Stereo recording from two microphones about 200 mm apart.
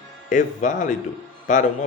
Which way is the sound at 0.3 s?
40° left (ahead or behind).